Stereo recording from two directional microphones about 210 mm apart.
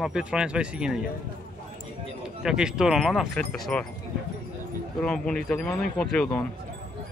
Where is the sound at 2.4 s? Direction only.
5° right (ahead or behind).